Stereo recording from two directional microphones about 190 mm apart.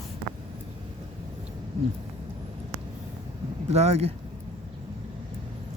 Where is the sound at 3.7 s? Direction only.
35° right (ahead or behind).